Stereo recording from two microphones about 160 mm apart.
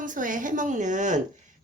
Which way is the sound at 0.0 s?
55° right (ahead or behind).